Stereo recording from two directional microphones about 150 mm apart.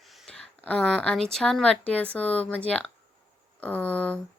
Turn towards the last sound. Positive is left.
turn(degrees=10)  # may be behind; listen again after turning